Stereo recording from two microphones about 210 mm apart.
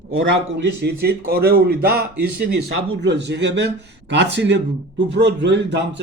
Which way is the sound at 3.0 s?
55° right (ahead or behind).